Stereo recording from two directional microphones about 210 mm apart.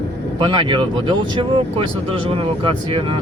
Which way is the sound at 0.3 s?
25° right (ahead or behind).